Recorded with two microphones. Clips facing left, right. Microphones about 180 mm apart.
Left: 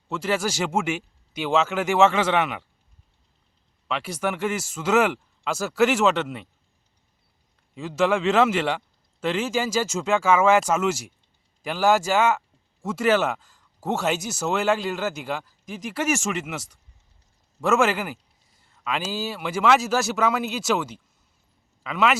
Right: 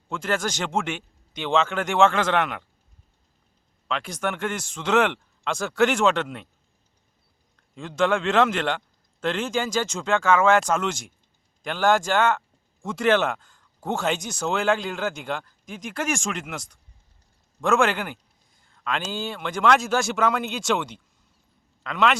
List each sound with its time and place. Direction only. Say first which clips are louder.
0.1 s speech: left 1 dB; 5° left (ahead or behind)
3.8 s speech: left 1 dB; 5° left (ahead or behind)
7.8 s speech: left 1 dB; 5° left (ahead or behind)